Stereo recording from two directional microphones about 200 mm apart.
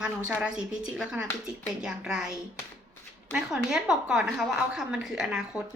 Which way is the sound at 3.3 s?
5° right (ahead or behind).